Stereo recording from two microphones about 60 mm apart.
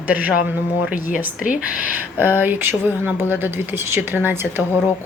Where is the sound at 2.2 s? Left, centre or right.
Right.